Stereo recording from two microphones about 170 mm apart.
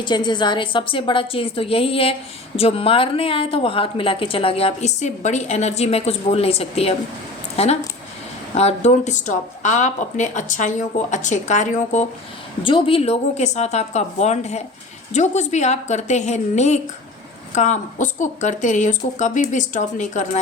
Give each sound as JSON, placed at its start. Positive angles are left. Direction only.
{"t": 0.0, "sound": "a woman's voice", "side_deg": 25}
{"t": 12.6, "sound": "a woman's voice", "side_deg": 30}